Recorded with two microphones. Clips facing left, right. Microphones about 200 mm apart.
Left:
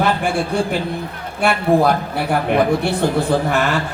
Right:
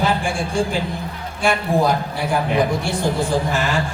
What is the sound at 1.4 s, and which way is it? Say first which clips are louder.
A man's voice: left 3 dB; 60° left (ahead or behind).